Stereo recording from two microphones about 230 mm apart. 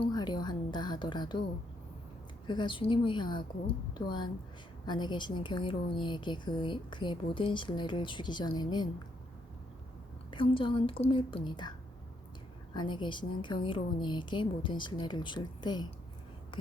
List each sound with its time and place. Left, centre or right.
0.1 s a sound: centre
2.5 s a woman's voice: centre
4.9 s a woman's voice: centre
10.3 s a woman's voice: left
12.7 s a woman's voice: centre